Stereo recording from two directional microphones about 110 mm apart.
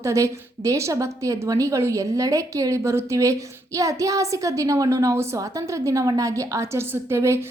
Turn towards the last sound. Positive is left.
turn(degrees=-25)  # may be behind; listen again after turning